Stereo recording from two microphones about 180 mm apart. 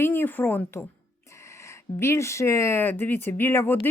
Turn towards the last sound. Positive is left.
turn(degrees=10)  # may be behind; listen again after turning